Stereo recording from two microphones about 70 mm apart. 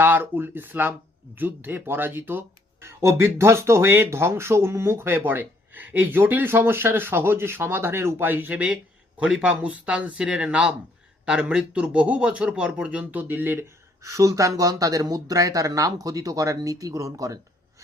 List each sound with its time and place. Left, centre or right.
0.0 s speech: right
2.8 s speech: right
14.0 s speech: right